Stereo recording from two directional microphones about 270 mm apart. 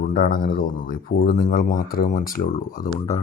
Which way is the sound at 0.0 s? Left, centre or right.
Left.